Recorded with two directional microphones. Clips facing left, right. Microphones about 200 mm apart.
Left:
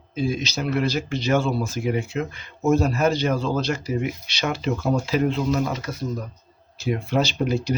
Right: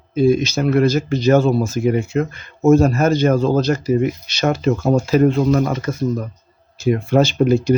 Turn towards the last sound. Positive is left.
turn(degrees=-50)  # may be behind; listen again after turning